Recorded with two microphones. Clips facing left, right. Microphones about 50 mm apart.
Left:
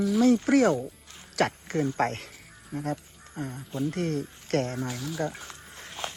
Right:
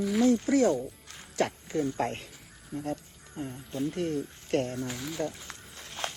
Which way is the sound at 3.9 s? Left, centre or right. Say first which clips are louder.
Left 1 dB; left.